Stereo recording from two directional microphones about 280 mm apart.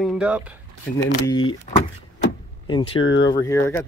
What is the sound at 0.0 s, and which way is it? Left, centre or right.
Speech, centre.